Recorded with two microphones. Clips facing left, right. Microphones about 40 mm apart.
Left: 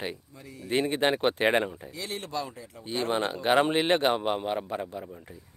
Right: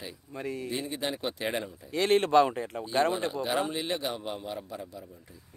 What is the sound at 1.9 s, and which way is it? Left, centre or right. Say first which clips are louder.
Speech: right 12 dB; right.